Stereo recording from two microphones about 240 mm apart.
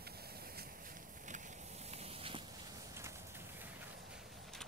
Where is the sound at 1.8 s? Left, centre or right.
Right.